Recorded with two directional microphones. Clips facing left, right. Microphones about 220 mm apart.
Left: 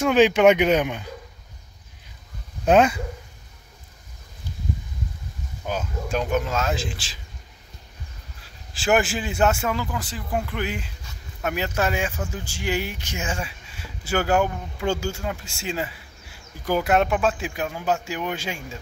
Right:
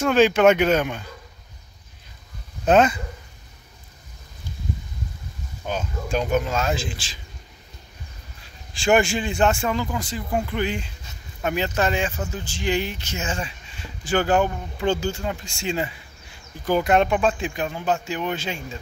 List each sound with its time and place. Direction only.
0.0 s speech: 15° left (ahead or behind)
2.6 s speech: 10° left (ahead or behind)
5.6 s speech: 5° left (ahead or behind)
8.7 s speech: 5° left (ahead or behind)